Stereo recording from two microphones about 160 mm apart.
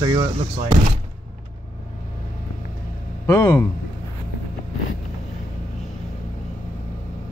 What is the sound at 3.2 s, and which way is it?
Speech, 15° left (ahead or behind).